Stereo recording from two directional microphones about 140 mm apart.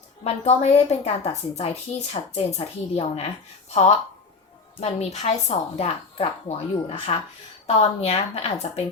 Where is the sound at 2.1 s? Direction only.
50° left (ahead or behind).